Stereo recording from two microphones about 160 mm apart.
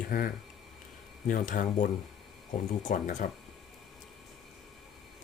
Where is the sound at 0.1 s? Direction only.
60° left (ahead or behind).